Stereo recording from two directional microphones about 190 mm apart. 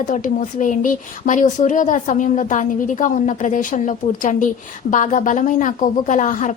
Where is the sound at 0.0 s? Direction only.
45° left (ahead or behind).